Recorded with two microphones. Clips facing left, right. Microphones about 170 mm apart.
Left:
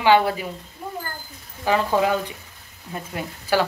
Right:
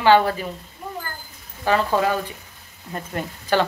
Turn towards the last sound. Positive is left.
turn(degrees=5)  # may be behind; listen again after turning